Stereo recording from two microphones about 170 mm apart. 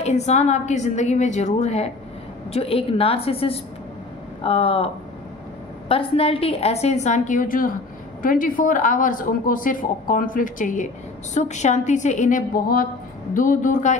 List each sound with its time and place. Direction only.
0.0 s a woman's voice: 40° left (ahead or behind)